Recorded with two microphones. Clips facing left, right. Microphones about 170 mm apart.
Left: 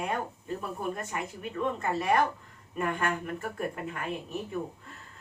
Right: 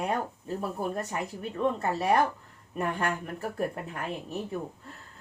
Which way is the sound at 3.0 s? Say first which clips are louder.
Even; 35° right (ahead or behind).